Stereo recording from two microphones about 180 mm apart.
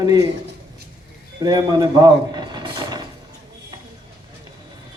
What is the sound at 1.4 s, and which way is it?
Mechanisms, 20° right (ahead or behind).